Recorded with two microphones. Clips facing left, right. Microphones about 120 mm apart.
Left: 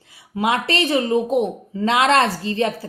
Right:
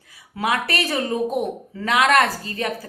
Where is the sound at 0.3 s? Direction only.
25° left (ahead or behind).